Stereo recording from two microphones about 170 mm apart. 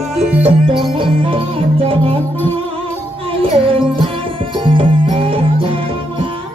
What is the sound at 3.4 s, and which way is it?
Music, 30° right (ahead or behind).